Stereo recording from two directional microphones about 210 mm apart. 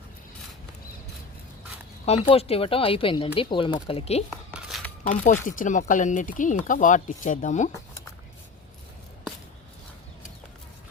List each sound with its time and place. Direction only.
2.0 s speech: 30° left (ahead or behind)
4.5 s a sound: centre (ahead or behind)
5.0 s speech: 40° left (ahead or behind)